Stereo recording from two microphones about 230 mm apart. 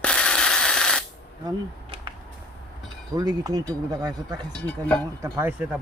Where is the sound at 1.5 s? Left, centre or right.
Right.